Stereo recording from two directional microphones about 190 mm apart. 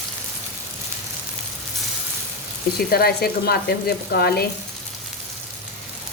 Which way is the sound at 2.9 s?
55° left (ahead or behind).